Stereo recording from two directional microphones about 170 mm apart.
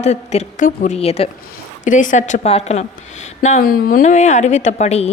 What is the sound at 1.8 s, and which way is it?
A woman's voice, 50° left (ahead or behind).